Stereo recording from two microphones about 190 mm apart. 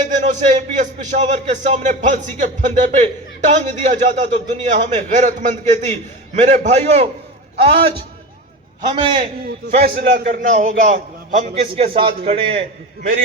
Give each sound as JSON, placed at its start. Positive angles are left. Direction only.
{"t": 0.0, "sound": "a man's voice", "side_deg": -40}
{"t": 9.6, "sound": "a man's voice", "side_deg": -55}